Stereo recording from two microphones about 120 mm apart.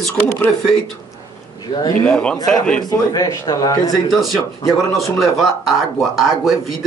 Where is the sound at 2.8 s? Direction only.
35° left (ahead or behind).